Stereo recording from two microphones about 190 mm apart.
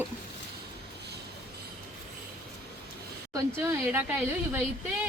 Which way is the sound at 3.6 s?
10° right (ahead or behind).